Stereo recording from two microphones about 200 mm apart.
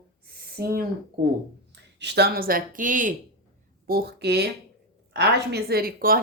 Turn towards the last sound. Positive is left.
turn(degrees=-45)  # may be behind; listen again after turning